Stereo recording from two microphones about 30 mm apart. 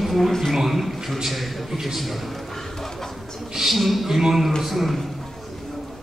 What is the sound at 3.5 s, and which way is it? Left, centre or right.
A man's voice, centre.